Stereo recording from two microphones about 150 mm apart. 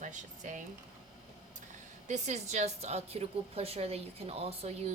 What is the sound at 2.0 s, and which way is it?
A woman's voice, 50° right (ahead or behind).